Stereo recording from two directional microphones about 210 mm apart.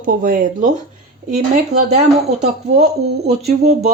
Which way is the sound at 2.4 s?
35° right (ahead or behind).